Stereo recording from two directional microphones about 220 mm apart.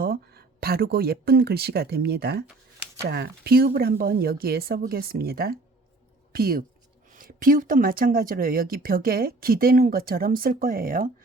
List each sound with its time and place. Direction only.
0.0 s speech: 45° right (ahead or behind)